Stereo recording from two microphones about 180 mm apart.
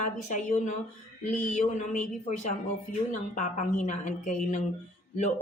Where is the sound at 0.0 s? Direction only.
45° left (ahead or behind).